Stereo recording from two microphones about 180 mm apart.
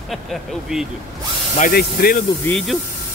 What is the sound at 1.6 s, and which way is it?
Speech, 60° left (ahead or behind).